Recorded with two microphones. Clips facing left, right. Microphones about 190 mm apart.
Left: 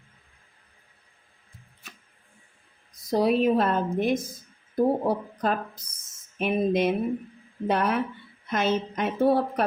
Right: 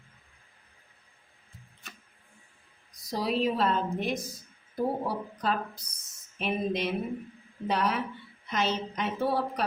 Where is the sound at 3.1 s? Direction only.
55° left (ahead or behind).